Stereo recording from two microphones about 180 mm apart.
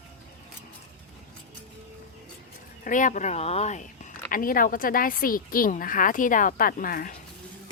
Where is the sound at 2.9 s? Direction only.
45° left (ahead or behind).